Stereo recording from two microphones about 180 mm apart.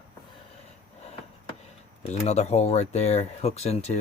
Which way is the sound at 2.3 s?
35° left (ahead or behind).